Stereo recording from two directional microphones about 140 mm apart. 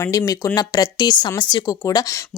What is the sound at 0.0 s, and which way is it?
Speech, 25° left (ahead or behind).